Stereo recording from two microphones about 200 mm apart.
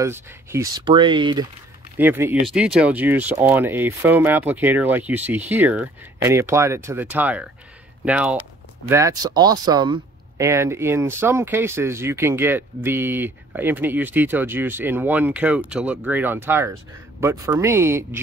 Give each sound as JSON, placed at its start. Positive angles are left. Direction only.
{"t": 0.0, "sound": "speech", "side_deg": -15}
{"t": 2.0, "sound": "speech", "side_deg": -10}